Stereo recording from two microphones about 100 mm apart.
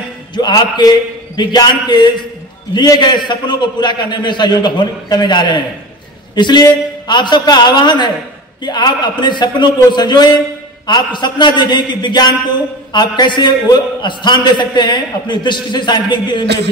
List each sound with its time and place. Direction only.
0.3 s a man's voice: 45° left (ahead or behind)